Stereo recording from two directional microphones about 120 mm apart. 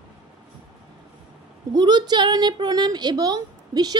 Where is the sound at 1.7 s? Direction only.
35° right (ahead or behind).